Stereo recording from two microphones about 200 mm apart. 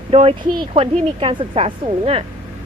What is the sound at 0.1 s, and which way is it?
Speech, 30° right (ahead or behind).